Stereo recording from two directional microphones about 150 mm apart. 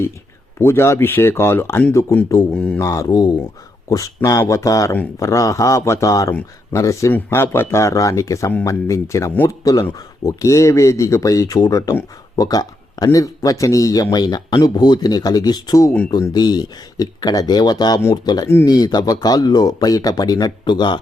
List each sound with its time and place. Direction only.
0.6 s speech: 15° left (ahead or behind)
2.5 s speech: 5° left (ahead or behind)
2.8 s speech: 20° left (ahead or behind)